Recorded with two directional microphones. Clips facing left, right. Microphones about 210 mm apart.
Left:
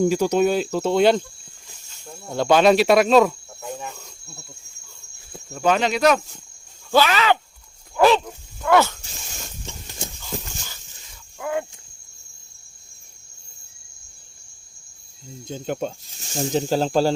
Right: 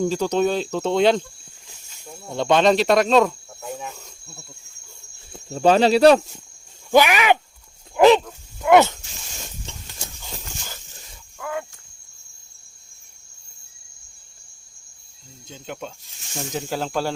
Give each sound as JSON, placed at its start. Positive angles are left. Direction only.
{"t": 0.0, "sound": "speech", "side_deg": 10}
{"t": 1.6, "sound": "cricket", "side_deg": 0}
{"t": 5.5, "sound": "speech", "side_deg": -30}
{"t": 6.9, "sound": "speech", "side_deg": -15}
{"t": 7.9, "sound": "dog", "side_deg": -20}
{"t": 8.6, "sound": "speech", "side_deg": -20}
{"t": 11.3, "sound": "a sound", "side_deg": 25}
{"t": 15.4, "sound": "speech", "side_deg": 40}